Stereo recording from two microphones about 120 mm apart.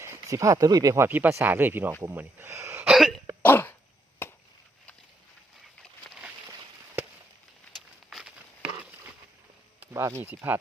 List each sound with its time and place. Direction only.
0.0 s speech: 25° right (ahead or behind)
2.8 s cough: centre (ahead or behind)
3.4 s dog: 15° left (ahead or behind)
4.2 s chop: 20° left (ahead or behind)
7.8 s walk: 5° right (ahead or behind)
9.8 s speech: 20° right (ahead or behind)